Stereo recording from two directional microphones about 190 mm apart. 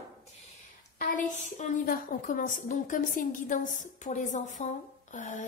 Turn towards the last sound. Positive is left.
turn(degrees=40)  # may be behind; listen again after turning